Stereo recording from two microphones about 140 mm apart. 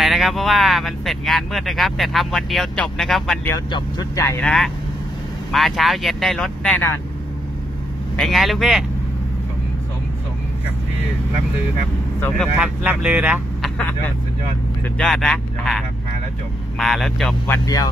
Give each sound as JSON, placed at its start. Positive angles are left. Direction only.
{"t": 0.0, "sound": "speech", "side_deg": 0}
{"t": 3.7, "sound": "speech", "side_deg": 25}
{"t": 4.4, "sound": "speech", "side_deg": 5}
{"t": 8.2, "sound": "speech", "side_deg": 0}
{"t": 12.5, "sound": "speech", "side_deg": -5}
{"t": 13.7, "sound": "speech", "side_deg": 10}